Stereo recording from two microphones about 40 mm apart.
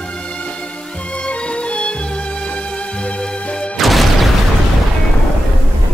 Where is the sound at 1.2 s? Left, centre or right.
Left.